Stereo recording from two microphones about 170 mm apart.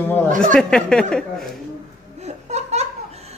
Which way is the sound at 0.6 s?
5° left (ahead or behind).